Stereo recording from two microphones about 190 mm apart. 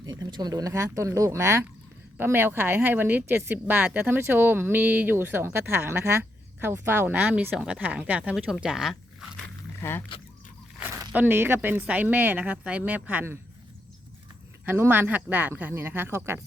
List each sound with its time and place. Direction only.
0.0 s speech: 20° right (ahead or behind); by 9.0 s centre (ahead or behind)
9.8 s speech: 10° left (ahead or behind)
11.1 s speech: 10° right (ahead or behind)
14.6 s speech: 10° right (ahead or behind)